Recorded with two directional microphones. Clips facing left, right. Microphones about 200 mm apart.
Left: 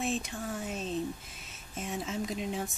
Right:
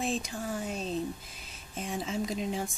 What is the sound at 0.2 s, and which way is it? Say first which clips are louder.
Speech: right 2 dB; centre (ahead or behind).